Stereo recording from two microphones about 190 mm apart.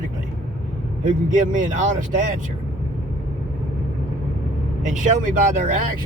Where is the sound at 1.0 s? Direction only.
40° right (ahead or behind).